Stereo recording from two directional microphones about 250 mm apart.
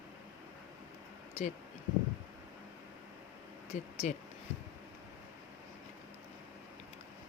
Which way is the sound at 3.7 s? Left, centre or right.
Left.